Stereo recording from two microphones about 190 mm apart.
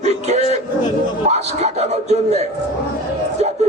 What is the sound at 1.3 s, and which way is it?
A man's voice, 35° right (ahead or behind).